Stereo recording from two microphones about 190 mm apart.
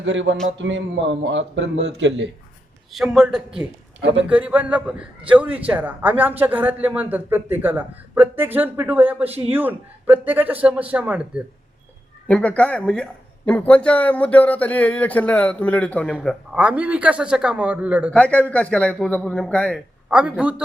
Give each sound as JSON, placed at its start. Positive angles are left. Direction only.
{"t": 0.0, "sound": "a man's voice", "side_deg": -75}
{"t": 2.9, "sound": "a man's voice", "side_deg": 0}
{"t": 12.3, "sound": "a man's voice", "side_deg": 5}
{"t": 18.1, "sound": "a man's voice", "side_deg": 5}
{"t": 20.1, "sound": "a man's voice", "side_deg": -5}